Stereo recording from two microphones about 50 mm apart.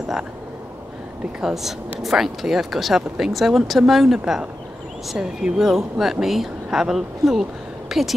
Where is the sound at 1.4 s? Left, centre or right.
Centre.